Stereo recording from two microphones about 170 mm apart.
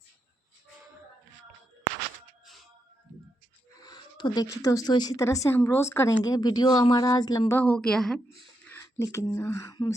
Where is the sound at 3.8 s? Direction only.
25° left (ahead or behind).